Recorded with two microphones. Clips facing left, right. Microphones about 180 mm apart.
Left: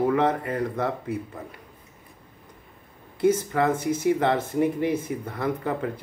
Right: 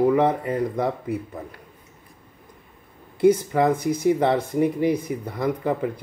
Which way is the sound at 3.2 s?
15° right (ahead or behind).